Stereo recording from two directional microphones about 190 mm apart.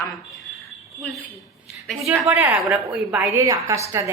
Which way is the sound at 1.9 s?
Centre (ahead or behind).